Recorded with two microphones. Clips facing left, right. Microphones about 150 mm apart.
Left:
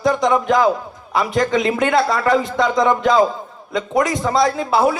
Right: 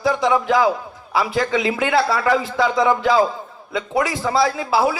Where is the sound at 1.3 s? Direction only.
45° left (ahead or behind).